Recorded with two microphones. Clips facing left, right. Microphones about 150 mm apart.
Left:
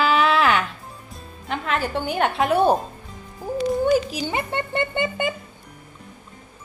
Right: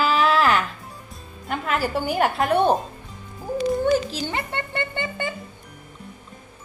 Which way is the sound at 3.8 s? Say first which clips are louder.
Left 1 dB; 15° left (ahead or behind).